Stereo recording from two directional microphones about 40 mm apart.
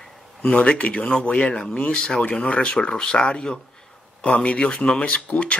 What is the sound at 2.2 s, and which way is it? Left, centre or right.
Speech, left.